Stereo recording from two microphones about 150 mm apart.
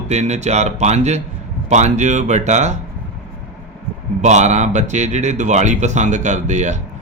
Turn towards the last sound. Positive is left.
turn(degrees=-50)  # may be behind; listen again after turning